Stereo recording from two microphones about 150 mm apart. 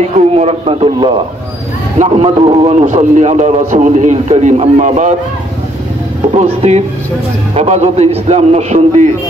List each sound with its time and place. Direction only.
0.4 s a man's voice: 40° right (ahead or behind)
2.7 s a man's voice: 55° right (ahead or behind)
6.3 s a man's voice: 45° right (ahead or behind)